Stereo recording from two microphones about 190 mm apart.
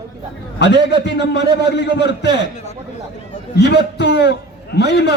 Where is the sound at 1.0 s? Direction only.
65° left (ahead or behind).